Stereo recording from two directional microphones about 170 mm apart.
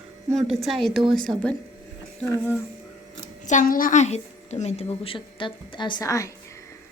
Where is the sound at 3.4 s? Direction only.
50° left (ahead or behind); by 6.3 s 20° left (ahead or behind).